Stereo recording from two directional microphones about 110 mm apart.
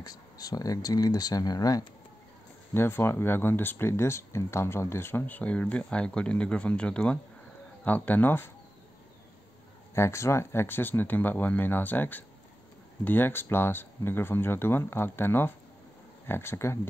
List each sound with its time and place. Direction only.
0.0 s speech: 35° left (ahead or behind)
2.7 s speech: 20° left (ahead or behind)
9.9 s speech: 25° left (ahead or behind)